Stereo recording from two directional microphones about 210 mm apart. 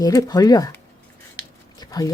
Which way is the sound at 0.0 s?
15° left (ahead or behind).